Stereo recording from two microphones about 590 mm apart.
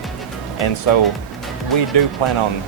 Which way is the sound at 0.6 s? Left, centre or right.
Left.